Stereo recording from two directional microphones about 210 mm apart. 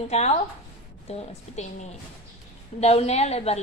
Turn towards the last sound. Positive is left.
turn(degrees=30)  # may be behind; listen again after turning